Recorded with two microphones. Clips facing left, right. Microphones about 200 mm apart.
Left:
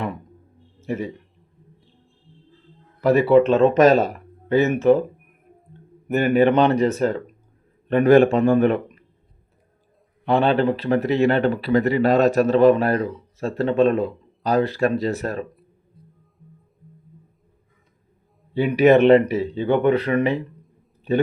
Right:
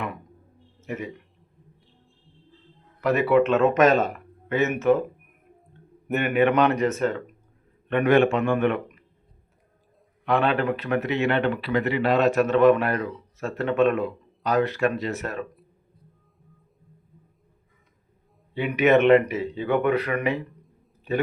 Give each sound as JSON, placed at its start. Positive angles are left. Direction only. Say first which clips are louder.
{"t": 0.8, "sound": "speech", "louder": "left 6 dB", "side_deg": 30}
{"t": 3.0, "sound": "speech", "louder": "left 5 dB", "side_deg": 35}
{"t": 6.1, "sound": "speech", "louder": "left 4 dB", "side_deg": 35}
{"t": 10.2, "sound": "speech", "louder": "left 4 dB", "side_deg": 30}
{"t": 18.5, "sound": "speech", "louder": "left 5 dB", "side_deg": 35}